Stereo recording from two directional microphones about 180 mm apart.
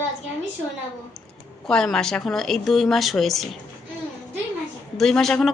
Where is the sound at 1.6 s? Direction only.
Centre (ahead or behind).